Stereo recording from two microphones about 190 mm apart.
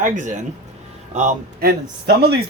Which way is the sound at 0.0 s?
40° right (ahead or behind).